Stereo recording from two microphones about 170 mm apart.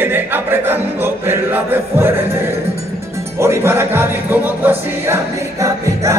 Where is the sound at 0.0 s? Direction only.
10° right (ahead or behind).